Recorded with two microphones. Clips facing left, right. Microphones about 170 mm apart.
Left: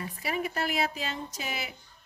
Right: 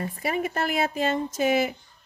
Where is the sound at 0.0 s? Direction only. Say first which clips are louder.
Right 5 dB; 50° right (ahead or behind).